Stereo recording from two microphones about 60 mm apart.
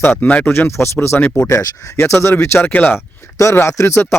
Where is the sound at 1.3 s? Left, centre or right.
Left.